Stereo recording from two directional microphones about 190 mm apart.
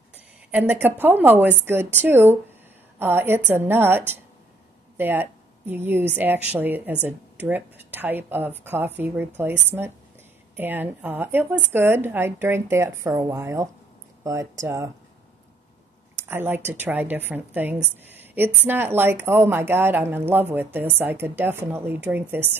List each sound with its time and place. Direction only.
0.5 s speech: 10° right (ahead or behind)
16.2 s speech: 10° right (ahead or behind)